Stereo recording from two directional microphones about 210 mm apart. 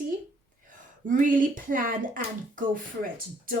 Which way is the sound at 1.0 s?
40° right (ahead or behind).